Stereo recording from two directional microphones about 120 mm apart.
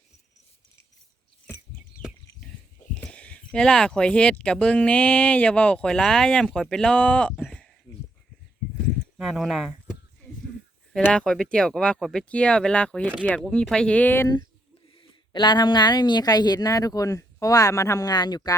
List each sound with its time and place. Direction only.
3.0 s speech: 10° left (ahead or behind)
9.1 s speech: 5° right (ahead or behind)
10.9 s speech: 10° left (ahead or behind)
14.9 s a woman's voice: 40° left (ahead or behind)